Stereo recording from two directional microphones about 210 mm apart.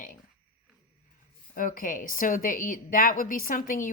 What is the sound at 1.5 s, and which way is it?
Speech, 40° left (ahead or behind).